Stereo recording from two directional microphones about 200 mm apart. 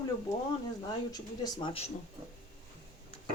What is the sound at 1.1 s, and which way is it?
Speech, 20° left (ahead or behind).